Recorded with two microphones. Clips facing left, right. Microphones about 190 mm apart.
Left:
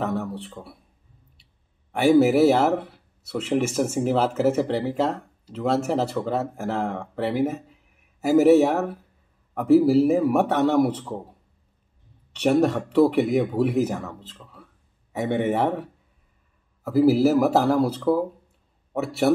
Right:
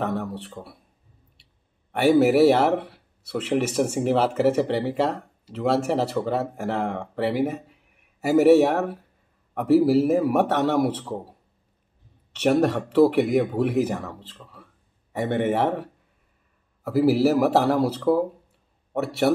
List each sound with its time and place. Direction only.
0.0 s a man's voice: 5° left (ahead or behind)
12.4 s speech: centre (ahead or behind)